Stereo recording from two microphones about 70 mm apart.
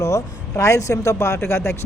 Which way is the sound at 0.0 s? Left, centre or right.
Left.